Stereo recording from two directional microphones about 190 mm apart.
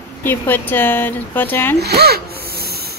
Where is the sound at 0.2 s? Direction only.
10° left (ahead or behind).